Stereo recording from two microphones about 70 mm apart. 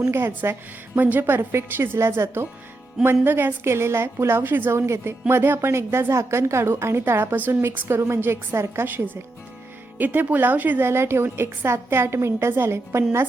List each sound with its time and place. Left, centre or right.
0.1 s a woman's voice: right
0.9 s a woman's voice: right
4.8 s a woman's voice: right